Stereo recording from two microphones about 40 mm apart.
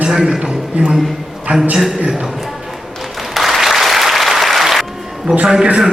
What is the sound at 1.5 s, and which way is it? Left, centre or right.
Speech, right.